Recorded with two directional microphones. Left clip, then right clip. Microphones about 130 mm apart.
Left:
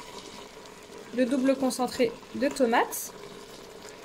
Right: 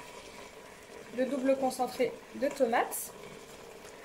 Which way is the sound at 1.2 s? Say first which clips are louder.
Left 4 dB; 90° left.